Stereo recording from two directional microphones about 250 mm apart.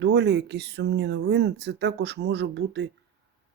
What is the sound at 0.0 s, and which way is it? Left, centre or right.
Speech, right.